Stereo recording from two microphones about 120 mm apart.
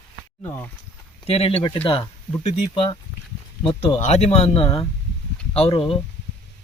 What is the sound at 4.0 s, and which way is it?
Speech, 65° left (ahead or behind).